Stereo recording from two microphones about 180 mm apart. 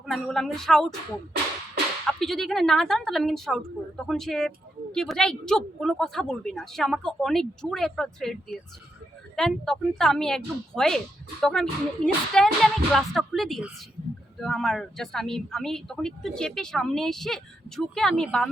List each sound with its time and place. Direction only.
0.0 s a woman's voice: centre (ahead or behind)
2.0 s a woman's voice: centre (ahead or behind)